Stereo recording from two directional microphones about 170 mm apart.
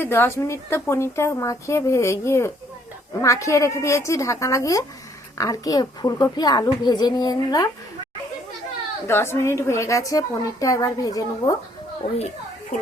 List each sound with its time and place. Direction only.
0.0 s a woman's voice: 10° left (ahead or behind)
9.0 s a woman's voice: 15° left (ahead or behind)
12.7 s speech: 50° left (ahead or behind)